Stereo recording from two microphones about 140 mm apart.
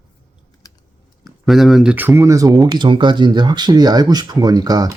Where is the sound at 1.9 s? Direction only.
15° right (ahead or behind).